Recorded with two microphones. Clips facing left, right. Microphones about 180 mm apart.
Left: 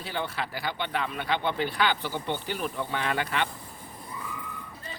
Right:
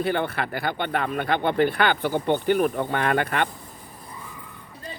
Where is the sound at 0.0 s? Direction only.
55° right (ahead or behind).